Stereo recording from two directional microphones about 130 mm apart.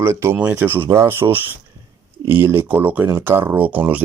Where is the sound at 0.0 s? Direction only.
20° right (ahead or behind).